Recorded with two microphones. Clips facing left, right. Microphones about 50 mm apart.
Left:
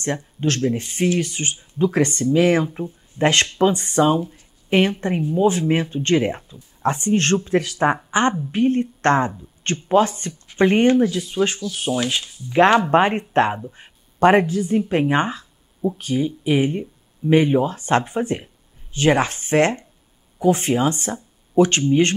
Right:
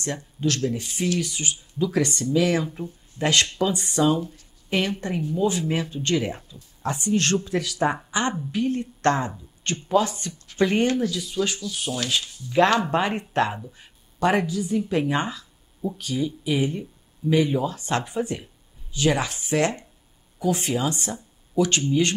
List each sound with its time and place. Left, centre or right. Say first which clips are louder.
0.0 s speech: left 4 dB; left
11.9 s speech: left 5 dB; centre
12.9 s a woman's voice: left 7 dB; left